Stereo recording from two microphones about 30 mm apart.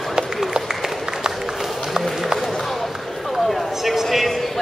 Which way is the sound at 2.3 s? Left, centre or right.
Centre.